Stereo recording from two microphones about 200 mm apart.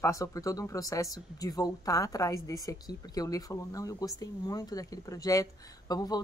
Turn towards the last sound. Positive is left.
turn(degrees=20)  # may be behind; listen again after turning